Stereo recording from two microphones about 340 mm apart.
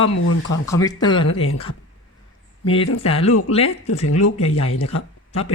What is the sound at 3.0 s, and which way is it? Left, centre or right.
Speech, centre.